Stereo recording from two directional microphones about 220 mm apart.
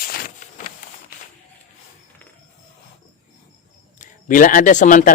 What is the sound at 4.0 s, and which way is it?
A man's voice, 35° left (ahead or behind).